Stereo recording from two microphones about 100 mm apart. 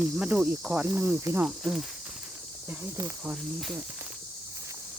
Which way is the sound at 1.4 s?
5° right (ahead or behind).